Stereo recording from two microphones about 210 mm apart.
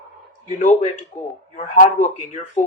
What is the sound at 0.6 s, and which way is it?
Speech, 35° left (ahead or behind).